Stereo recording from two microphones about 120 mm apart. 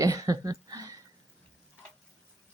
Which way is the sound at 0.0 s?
30° right (ahead or behind).